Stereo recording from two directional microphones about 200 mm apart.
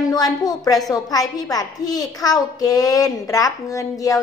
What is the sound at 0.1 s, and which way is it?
A woman's voice, 20° left (ahead or behind).